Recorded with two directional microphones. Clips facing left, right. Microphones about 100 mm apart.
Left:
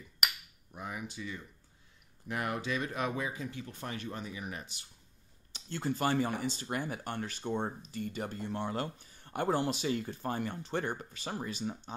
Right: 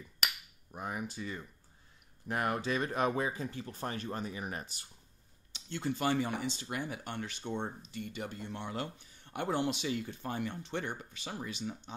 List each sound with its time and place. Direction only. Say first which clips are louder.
0.7 s speech: right 2 dB; 45° right (ahead or behind)
5.5 s speech: left 1 dB; 40° left (ahead or behind)